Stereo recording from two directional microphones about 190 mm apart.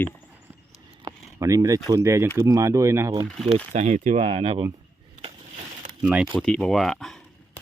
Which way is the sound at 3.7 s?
40° right (ahead or behind).